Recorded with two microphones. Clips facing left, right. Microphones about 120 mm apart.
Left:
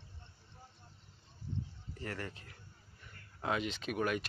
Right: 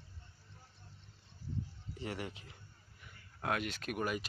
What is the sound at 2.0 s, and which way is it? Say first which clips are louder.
Speech: right 1 dB; 15° right (ahead or behind).